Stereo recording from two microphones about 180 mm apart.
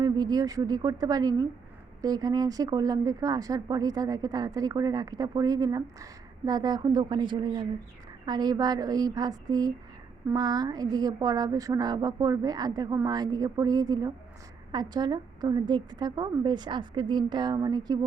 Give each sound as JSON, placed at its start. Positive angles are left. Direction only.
{"t": 0.0, "sound": "speech", "side_deg": -20}